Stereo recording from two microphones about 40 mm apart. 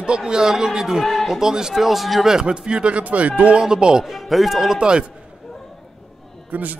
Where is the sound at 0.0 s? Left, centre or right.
Right.